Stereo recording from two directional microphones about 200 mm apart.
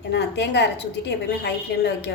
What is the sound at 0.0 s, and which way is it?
A woman's voice, 60° left (ahead or behind).